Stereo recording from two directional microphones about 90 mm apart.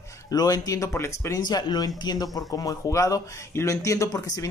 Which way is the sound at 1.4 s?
50° left (ahead or behind).